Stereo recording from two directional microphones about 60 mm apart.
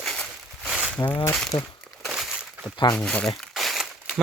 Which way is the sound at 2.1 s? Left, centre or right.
Centre.